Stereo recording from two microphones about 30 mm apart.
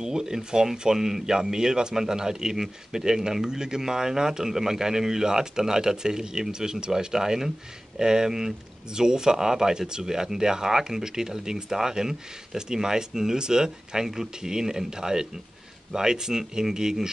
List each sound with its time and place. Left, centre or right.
0.0 s speech: right